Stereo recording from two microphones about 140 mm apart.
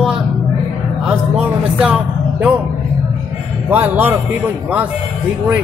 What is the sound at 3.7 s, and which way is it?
Speech, 15° right (ahead or behind).